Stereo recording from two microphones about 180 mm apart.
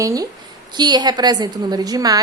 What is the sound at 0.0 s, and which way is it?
A woman's voice, 20° right (ahead or behind).